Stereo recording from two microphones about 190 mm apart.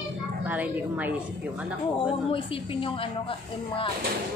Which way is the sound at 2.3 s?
30° left (ahead or behind).